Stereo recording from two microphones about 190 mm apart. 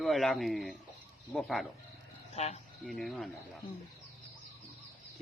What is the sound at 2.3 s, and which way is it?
Speech, 35° left (ahead or behind).